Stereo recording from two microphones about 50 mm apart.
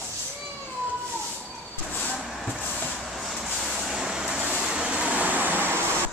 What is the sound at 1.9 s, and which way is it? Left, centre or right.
Vehicle, left.